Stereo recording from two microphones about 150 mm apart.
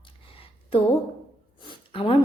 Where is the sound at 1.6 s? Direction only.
35° left (ahead or behind).